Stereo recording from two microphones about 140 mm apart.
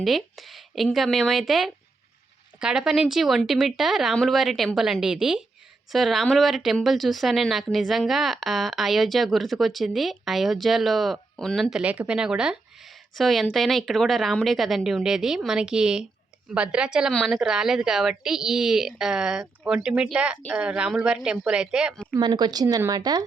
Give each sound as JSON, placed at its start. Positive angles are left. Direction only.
{"t": 0.0, "sound": "speech", "side_deg": 0}
{"t": 22.1, "sound": "speech", "side_deg": -30}